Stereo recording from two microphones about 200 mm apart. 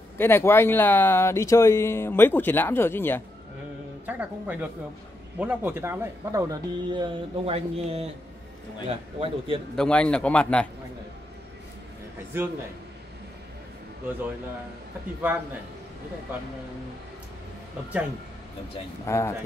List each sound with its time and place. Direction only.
0.2 s speech: 10° left (ahead or behind)
4.0 s speech: 10° right (ahead or behind); by 9.6 s 30° right (ahead or behind)
9.8 s a man's voice: 5° left (ahead or behind)
19.0 s speech: 15° left (ahead or behind)